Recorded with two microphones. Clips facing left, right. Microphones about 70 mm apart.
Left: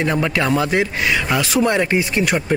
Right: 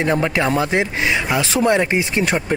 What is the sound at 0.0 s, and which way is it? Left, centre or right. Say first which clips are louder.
Speech: right 1 dB; right.